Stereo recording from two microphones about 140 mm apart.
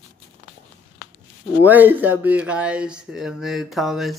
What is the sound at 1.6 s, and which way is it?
A man's voice, 10° right (ahead or behind).